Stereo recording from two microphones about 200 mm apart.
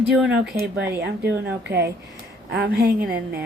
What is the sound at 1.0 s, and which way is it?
A woman's voice, 55° right (ahead or behind).